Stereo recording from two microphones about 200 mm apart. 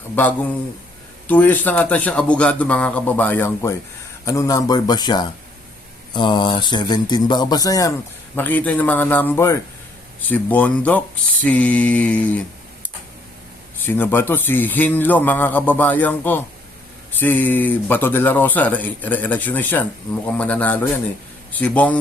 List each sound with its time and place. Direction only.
1.3 s a man's voice: 10° left (ahead or behind)
13.7 s speech: 10° left (ahead or behind)